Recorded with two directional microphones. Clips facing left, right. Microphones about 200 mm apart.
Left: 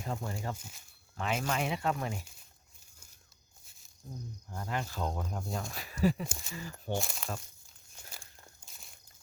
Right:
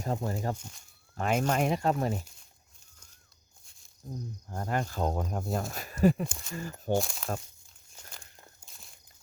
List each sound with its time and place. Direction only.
0.0 s speech: 40° right (ahead or behind)
3.6 s a sound: 5° left (ahead or behind)
4.4 s speech: 45° right (ahead or behind)
8.1 s crumpling: 10° left (ahead or behind)
8.6 s walk: centre (ahead or behind)